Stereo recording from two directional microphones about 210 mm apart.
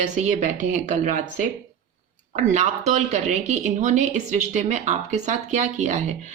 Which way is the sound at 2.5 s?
35° right (ahead or behind).